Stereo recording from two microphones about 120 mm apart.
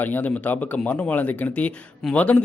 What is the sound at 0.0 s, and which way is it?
Speech, 15° left (ahead or behind).